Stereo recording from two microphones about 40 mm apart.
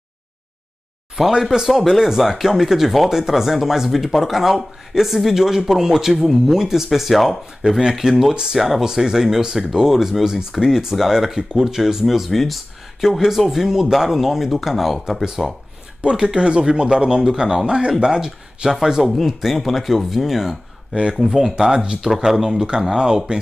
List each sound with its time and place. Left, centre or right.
1.2 s speech: centre
1.7 s speech: centre
7.6 s speech: right
8.0 s speech: centre
13.5 s speech: centre
16.3 s speech: right
19.0 s speech: centre
20.9 s speech: right
21.2 s speech: centre
22.1 s speech: centre